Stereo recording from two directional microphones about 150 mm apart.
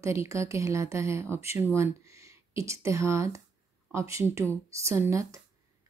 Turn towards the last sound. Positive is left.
turn(degrees=-20)  # may be behind; listen again after turning